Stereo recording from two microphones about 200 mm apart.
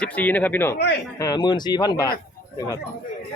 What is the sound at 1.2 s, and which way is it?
Speech, 20° left (ahead or behind).